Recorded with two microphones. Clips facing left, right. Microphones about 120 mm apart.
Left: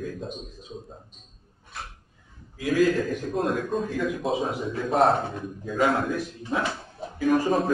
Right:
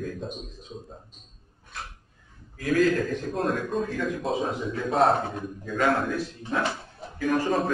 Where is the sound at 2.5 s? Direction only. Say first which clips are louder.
Left 1 dB; 10° left (ahead or behind).